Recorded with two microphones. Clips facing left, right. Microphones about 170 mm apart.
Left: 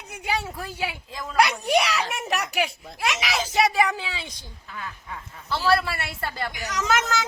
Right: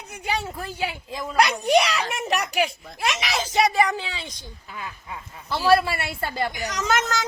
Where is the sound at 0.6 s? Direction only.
5° left (ahead or behind).